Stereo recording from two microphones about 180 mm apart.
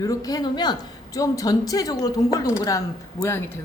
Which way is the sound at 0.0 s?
20° left (ahead or behind).